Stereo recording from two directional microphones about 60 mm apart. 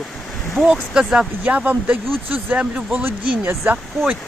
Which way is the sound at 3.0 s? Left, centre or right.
Right.